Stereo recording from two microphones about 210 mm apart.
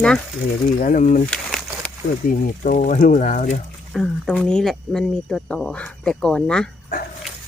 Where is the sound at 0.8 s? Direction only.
40° left (ahead or behind).